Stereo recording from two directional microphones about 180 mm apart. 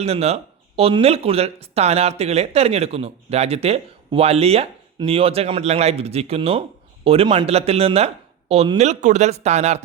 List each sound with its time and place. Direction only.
0.0 s speech: 35° right (ahead or behind)